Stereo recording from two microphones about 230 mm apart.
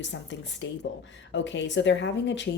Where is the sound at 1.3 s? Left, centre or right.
Left.